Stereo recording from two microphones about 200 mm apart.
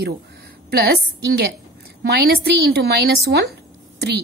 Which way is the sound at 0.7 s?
50° right (ahead or behind).